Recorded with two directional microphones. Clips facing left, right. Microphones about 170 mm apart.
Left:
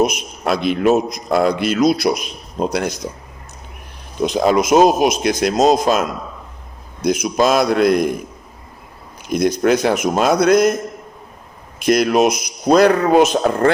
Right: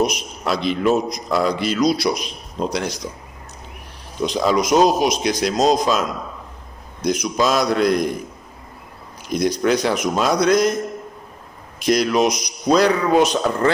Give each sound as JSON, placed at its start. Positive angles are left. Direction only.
{"t": 0.0, "sound": "a man's voice", "side_deg": 55}
{"t": 4.2, "sound": "a man's voice", "side_deg": 55}
{"t": 9.3, "sound": "a man's voice", "side_deg": 50}
{"t": 11.8, "sound": "a man's voice", "side_deg": 55}